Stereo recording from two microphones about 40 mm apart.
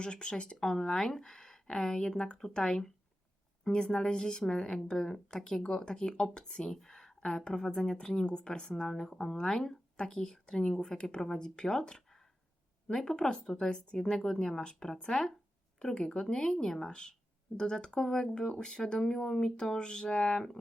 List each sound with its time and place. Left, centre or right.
0.0 s speech: left
6.7 s a sound: centre
7.2 s speech: centre